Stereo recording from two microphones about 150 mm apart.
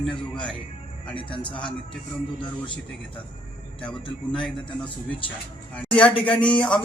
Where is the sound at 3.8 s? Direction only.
5° left (ahead or behind).